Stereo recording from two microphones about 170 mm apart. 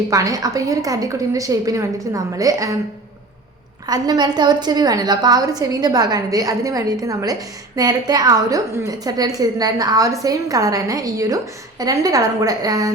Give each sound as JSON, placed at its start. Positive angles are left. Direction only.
{"t": 0.1, "sound": "a woman's voice", "side_deg": -20}
{"t": 3.8, "sound": "a woman's voice", "side_deg": -25}